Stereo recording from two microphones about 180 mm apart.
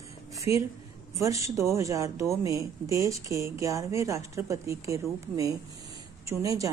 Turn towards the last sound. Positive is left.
turn(degrees=-20)  # may be behind; listen again after turning